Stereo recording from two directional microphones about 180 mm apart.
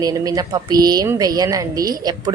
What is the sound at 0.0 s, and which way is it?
Speech, 20° right (ahead or behind).